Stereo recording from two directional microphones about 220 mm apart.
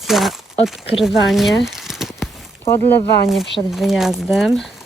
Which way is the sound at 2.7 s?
10° left (ahead or behind).